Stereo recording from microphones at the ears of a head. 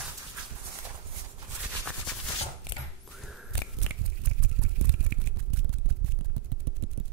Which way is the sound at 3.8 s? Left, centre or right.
Right.